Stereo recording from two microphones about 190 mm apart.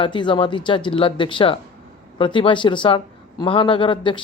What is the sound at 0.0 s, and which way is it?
Speech, 25° left (ahead or behind).